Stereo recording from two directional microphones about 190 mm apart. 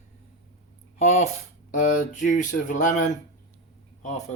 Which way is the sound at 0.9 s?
35° left (ahead or behind).